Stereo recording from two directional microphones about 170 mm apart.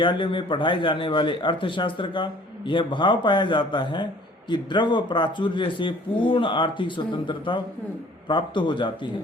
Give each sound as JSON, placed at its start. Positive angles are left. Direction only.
{"t": 0.0, "sound": "a man's voice", "side_deg": 30}